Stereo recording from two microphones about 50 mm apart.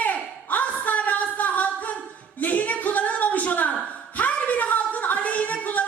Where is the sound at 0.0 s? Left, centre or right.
Left.